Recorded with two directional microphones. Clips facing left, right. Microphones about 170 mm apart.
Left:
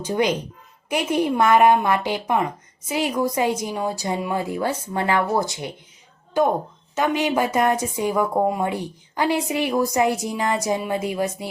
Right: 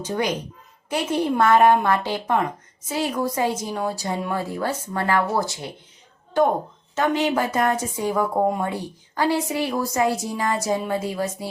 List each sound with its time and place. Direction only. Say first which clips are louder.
0.9 s a woman's voice: left 1 dB; 15° left (ahead or behind)
6.9 s a woman's voice: even; 15° left (ahead or behind)
8.6 s a woman's voice: left 2 dB; 15° left (ahead or behind)